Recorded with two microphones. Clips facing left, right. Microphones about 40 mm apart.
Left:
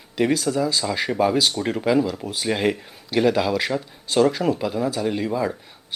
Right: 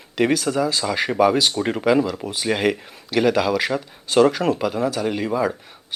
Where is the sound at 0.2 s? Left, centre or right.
Right.